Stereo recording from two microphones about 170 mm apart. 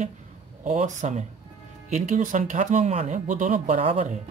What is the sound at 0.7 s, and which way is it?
Speech, 40° right (ahead or behind).